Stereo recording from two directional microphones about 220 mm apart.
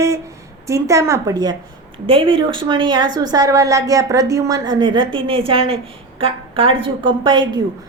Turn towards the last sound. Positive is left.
turn(degrees=-20)  # may be behind; listen again after turning